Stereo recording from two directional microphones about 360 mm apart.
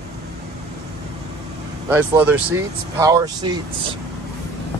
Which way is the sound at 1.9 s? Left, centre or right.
Centre.